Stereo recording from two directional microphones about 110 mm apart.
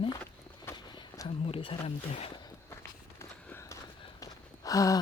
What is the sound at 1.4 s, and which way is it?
Speech, 55° left (ahead or behind).